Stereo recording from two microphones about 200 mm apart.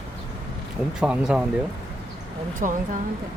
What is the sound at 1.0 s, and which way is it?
Speech, 5° right (ahead or behind).